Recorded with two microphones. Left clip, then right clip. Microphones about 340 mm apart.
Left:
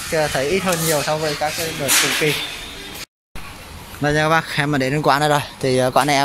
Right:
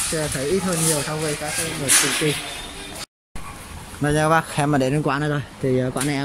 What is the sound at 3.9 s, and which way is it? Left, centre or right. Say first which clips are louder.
Speech: left 2 dB; centre.